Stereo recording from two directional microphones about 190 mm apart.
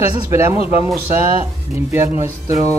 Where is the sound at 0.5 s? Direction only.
30° left (ahead or behind).